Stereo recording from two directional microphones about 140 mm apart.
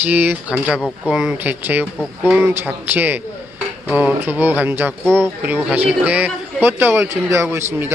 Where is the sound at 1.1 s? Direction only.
5° right (ahead or behind).